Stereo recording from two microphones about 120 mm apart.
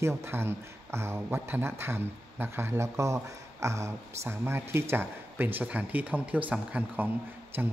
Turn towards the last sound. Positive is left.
turn(degrees=-15)  # may be behind; listen again after turning